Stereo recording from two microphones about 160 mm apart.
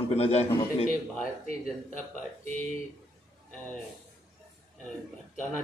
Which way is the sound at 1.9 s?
55° left (ahead or behind).